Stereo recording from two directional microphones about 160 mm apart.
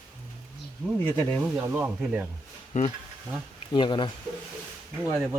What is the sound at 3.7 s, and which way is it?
Speech, 30° left (ahead or behind).